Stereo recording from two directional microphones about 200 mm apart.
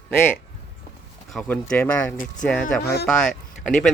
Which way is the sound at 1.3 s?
Centre (ahead or behind).